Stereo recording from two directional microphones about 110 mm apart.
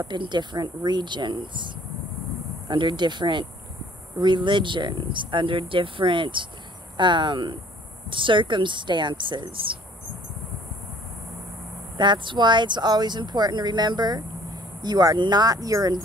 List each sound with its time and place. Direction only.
0.0 s speech: 45° right (ahead or behind)
2.7 s speech: 45° right (ahead or behind)
12.0 s speech: 45° right (ahead or behind)